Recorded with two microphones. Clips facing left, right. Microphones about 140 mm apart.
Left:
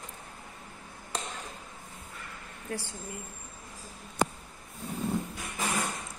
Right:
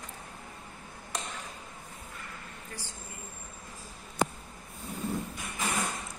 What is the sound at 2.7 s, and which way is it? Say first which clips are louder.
Speech: left 11 dB; 70° left (ahead or behind).